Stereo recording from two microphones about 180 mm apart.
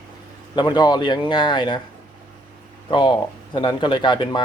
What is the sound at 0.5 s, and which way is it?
Speech, 25° left (ahead or behind).